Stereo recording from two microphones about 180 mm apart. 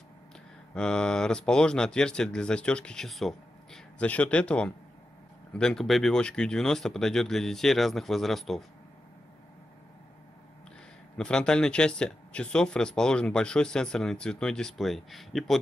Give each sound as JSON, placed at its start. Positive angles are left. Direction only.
{"t": 0.7, "sound": "speech", "side_deg": 5}
{"t": 11.1, "sound": "speech", "side_deg": 5}